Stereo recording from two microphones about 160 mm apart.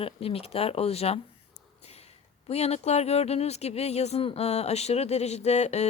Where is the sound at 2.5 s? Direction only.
40° left (ahead or behind).